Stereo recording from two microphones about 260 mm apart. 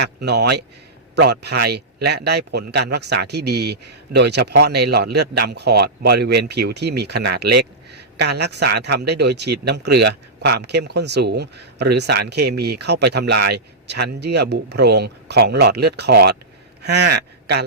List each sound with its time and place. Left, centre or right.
0.0 s a man's voice: right